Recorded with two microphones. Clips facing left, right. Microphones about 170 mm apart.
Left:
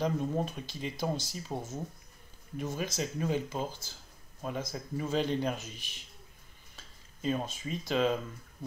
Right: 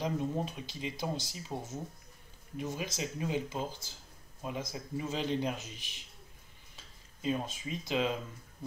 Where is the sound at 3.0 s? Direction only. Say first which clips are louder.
Left 6 dB; 50° left (ahead or behind).